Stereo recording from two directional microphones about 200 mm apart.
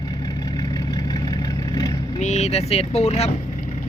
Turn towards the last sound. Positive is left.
turn(degrees=35)  # may be behind; listen again after turning